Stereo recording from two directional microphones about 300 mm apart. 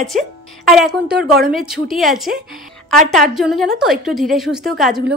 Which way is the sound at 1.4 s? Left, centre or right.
Right.